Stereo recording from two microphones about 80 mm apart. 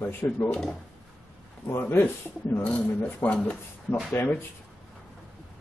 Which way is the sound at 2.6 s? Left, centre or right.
Centre.